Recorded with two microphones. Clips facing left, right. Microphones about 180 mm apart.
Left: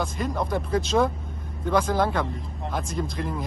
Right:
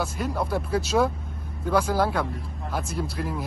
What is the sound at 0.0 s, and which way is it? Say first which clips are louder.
Speech: even; 10° right (ahead or behind).